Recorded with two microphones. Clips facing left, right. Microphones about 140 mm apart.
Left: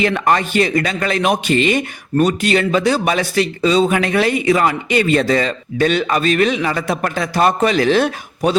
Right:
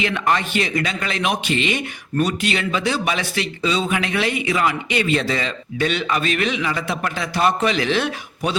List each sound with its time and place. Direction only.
0.0 s a man's voice: 45° left (ahead or behind)